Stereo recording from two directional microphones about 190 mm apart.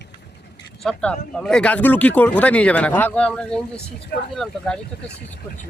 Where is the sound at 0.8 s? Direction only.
5° left (ahead or behind).